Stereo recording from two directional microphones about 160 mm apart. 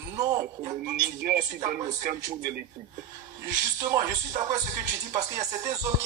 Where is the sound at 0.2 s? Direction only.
25° right (ahead or behind).